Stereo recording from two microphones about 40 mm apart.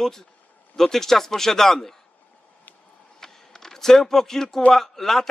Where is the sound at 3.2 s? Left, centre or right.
Centre.